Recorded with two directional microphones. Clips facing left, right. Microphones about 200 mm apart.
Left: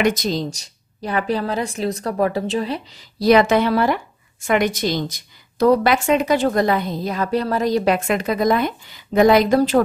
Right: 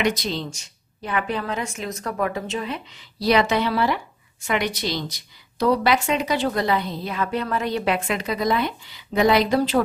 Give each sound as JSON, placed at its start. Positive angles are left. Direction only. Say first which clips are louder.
{"t": 0.0, "sound": "a woman's voice", "louder": "left 4 dB", "side_deg": 45}